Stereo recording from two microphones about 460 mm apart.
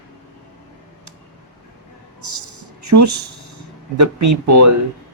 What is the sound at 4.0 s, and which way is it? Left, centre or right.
Speech, right.